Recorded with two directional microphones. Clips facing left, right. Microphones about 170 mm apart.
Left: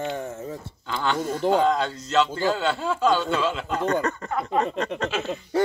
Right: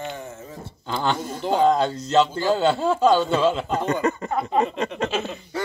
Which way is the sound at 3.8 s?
10° right (ahead or behind).